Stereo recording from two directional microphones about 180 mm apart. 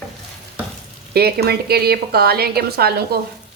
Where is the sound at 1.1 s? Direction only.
60° right (ahead or behind).